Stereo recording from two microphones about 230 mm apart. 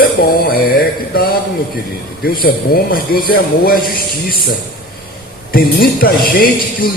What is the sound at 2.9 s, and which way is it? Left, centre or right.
A man's voice, left.